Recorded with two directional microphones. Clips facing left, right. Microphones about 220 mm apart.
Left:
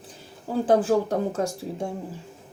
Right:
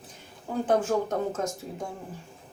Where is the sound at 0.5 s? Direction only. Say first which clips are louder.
Left 4 dB; 35° left (ahead or behind).